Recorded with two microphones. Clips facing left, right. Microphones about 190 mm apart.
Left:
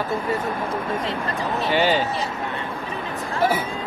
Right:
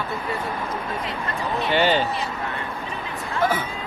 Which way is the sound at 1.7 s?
5° left (ahead or behind).